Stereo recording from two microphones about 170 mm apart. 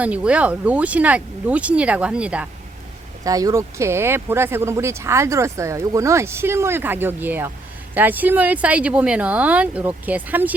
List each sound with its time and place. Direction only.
0.0 s speech: 5° right (ahead or behind)
3.2 s speech: 20° right (ahead or behind)